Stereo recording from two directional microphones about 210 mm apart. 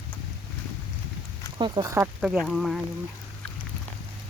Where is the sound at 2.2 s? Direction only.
5° right (ahead or behind).